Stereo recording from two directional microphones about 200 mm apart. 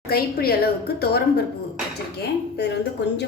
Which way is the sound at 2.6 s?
60° left (ahead or behind).